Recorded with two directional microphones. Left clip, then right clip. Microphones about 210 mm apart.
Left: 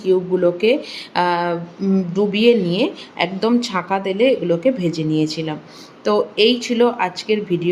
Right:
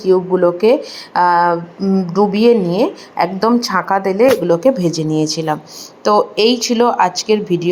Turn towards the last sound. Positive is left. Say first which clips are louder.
# right 5 dB
turn(degrees=-10)  # may be behind; listen again after turning